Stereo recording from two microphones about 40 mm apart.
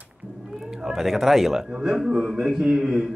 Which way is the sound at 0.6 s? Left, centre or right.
Centre.